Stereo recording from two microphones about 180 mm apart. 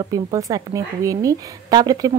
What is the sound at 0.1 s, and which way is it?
Speech, 20° right (ahead or behind).